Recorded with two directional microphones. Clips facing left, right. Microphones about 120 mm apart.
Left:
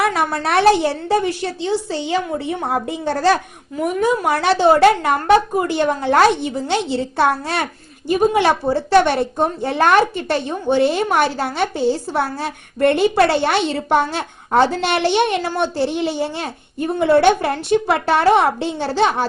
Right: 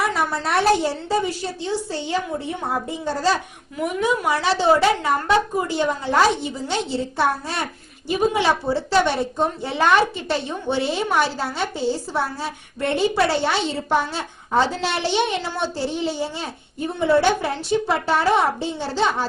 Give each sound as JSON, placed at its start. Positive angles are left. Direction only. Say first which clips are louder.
{"t": 0.0, "sound": "a woman's voice", "louder": "left 4 dB", "side_deg": 65}
{"t": 2.6, "sound": "a woman's voice", "louder": "left 3 dB", "side_deg": 70}
{"t": 3.8, "sound": "a woman's voice", "louder": "left 4 dB", "side_deg": 45}
{"t": 8.0, "sound": "a woman's voice", "louder": "left 4 dB", "side_deg": 50}